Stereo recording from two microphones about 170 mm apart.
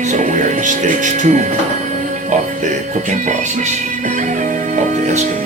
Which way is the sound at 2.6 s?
45° right (ahead or behind).